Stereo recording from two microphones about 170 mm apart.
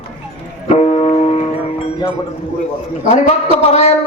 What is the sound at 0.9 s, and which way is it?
Music, 40° left (ahead or behind).